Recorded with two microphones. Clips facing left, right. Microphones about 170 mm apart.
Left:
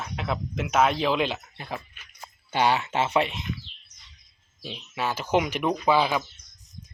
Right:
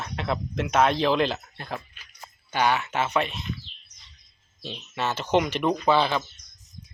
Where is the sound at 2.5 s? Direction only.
25° left (ahead or behind).